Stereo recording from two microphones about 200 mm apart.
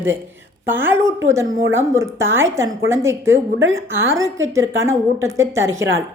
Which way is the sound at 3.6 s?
75° right (ahead or behind).